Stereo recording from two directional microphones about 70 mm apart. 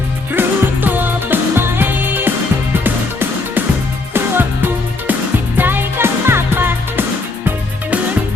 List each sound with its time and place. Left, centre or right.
0.3 s music: right